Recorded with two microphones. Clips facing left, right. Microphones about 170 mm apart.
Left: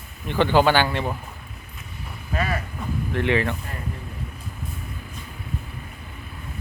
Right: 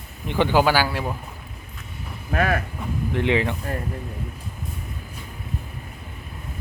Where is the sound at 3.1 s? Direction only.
15° right (ahead or behind).